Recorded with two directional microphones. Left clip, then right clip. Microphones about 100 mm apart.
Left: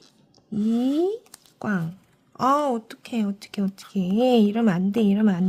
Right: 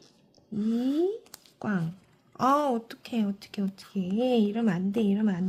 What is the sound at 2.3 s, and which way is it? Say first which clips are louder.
A woman's voice: left 3 dB; 20° left (ahead or behind).